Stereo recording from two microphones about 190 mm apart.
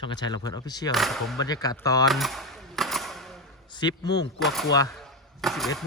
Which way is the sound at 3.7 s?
20° left (ahead or behind).